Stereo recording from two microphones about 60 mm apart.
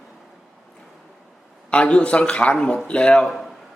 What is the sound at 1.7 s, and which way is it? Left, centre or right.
A man's voice, centre.